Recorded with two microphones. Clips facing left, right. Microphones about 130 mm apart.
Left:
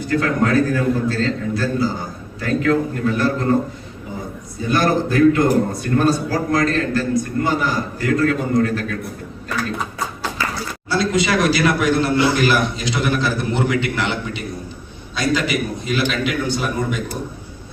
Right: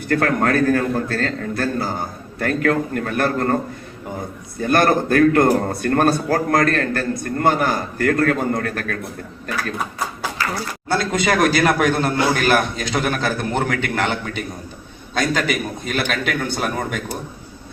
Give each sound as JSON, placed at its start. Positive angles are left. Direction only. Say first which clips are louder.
{"t": 0.0, "sound": "a man's voice", "louder": "even", "side_deg": -55}
{"t": 4.6, "sound": "a man's voice", "louder": "right 1 dB", "side_deg": -55}
{"t": 10.8, "sound": "a man's voice", "louder": "left 1 dB", "side_deg": -50}